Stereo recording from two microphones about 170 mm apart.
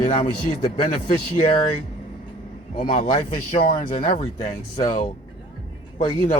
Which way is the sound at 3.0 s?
35° left (ahead or behind).